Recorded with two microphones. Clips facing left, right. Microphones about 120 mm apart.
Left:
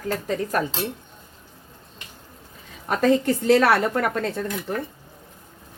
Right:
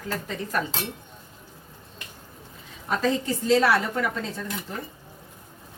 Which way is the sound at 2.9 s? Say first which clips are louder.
Left 5 dB; 55° left (ahead or behind).